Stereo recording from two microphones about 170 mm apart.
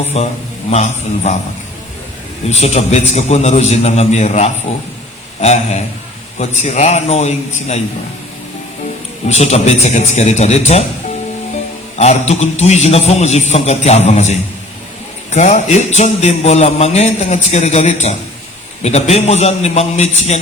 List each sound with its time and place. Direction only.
0.1 s a man's voice: 40° left (ahead or behind)
2.5 s a man's voice: 40° left (ahead or behind)
9.3 s a man's voice: 40° left (ahead or behind)
11.9 s a man's voice: 40° left (ahead or behind)